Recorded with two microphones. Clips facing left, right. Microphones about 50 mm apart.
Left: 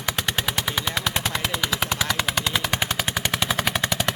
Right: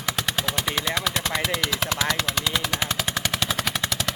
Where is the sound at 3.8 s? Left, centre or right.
Left.